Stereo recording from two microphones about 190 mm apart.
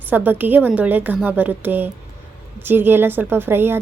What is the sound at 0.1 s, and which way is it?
A woman's voice, 10° right (ahead or behind).